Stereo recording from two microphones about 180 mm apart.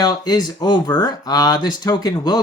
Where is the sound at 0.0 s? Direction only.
20° left (ahead or behind).